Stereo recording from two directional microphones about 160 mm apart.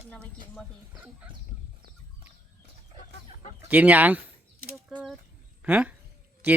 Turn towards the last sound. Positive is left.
turn(degrees=-10)  # may be behind; listen again after turning